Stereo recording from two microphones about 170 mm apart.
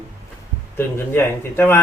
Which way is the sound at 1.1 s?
15° left (ahead or behind).